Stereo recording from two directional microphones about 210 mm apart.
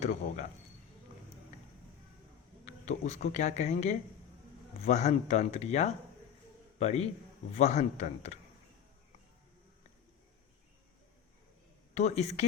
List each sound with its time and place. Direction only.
0.0 s speech: 35° left (ahead or behind)
2.6 s a man's voice: 35° left (ahead or behind)
11.9 s speech: 30° left (ahead or behind)